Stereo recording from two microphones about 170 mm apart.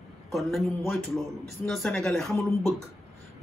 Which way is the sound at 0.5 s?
Centre (ahead or behind).